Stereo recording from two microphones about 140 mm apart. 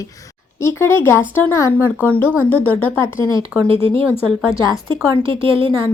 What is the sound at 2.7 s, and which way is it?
Speech, 15° left (ahead or behind).